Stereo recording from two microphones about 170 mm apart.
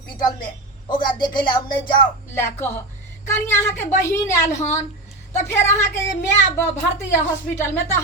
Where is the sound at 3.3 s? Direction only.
15° left (ahead or behind).